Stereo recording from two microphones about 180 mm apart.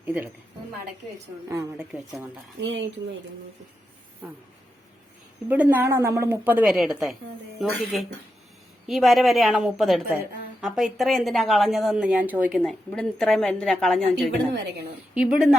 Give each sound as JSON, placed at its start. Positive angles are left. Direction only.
{"t": 0.0, "sound": "a woman's voice", "side_deg": -10}
{"t": 1.5, "sound": "a woman's voice", "side_deg": -15}
{"t": 1.9, "sound": "a woman's voice", "side_deg": -5}
{"t": 2.6, "sound": "speech", "side_deg": -80}
{"t": 5.5, "sound": "a woman's voice", "side_deg": -10}
{"t": 14.5, "sound": "a woman's voice", "side_deg": -65}
{"t": 15.1, "sound": "speech", "side_deg": -5}